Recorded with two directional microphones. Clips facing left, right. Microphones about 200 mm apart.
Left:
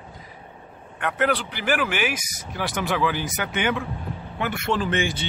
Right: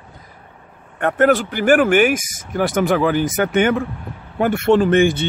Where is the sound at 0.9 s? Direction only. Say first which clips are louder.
Right 9 dB; 45° right (ahead or behind).